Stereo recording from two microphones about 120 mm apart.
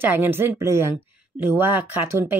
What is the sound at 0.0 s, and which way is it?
Speech, 20° right (ahead or behind).